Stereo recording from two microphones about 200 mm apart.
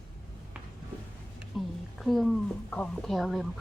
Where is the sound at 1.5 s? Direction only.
Centre (ahead or behind).